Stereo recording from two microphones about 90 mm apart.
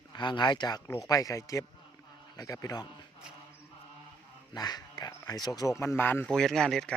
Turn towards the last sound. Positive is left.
turn(degrees=5)  # may be behind; listen again after turning